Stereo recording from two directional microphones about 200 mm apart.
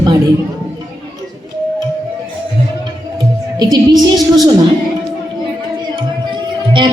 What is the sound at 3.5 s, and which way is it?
Speech, 20° right (ahead or behind).